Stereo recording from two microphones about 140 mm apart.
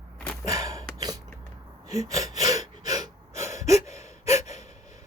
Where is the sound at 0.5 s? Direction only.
25° right (ahead or behind).